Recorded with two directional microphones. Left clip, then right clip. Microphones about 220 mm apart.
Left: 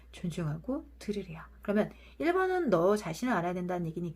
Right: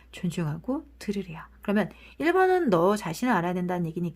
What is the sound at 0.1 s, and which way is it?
Speech, 45° right (ahead or behind).